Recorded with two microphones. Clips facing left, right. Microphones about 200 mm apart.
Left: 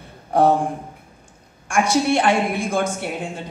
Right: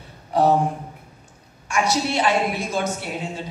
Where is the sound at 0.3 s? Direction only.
55° left (ahead or behind).